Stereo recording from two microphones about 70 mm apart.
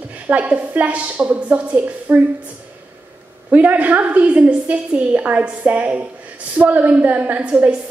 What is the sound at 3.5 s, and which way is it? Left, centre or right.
A woman's voice, right.